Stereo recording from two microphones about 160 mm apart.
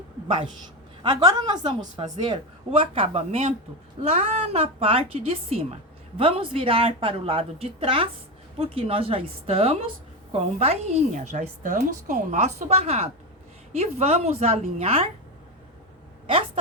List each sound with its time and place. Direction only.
1.0 s a woman's voice: 25° right (ahead or behind)